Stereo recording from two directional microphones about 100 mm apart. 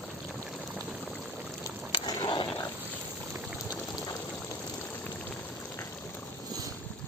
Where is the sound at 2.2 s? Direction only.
50° left (ahead or behind).